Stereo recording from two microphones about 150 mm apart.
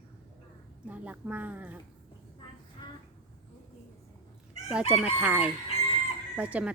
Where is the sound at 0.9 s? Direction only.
10° right (ahead or behind).